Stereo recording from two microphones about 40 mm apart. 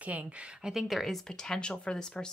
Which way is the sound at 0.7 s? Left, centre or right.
Centre.